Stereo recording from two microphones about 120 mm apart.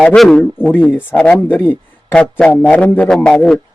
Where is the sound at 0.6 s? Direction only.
15° left (ahead or behind).